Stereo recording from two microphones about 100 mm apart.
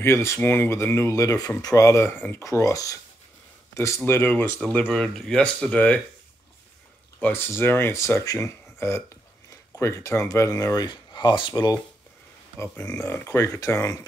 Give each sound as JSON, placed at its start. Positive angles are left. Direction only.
{"t": 0.0, "sound": "speech", "side_deg": 25}
{"t": 4.9, "sound": "speech", "side_deg": 5}
{"t": 7.2, "sound": "speech", "side_deg": 20}
{"t": 13.0, "sound": "speech", "side_deg": 25}